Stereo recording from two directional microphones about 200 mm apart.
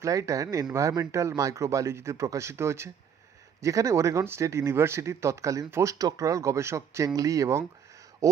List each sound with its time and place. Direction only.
0.0 s speech: 15° right (ahead or behind)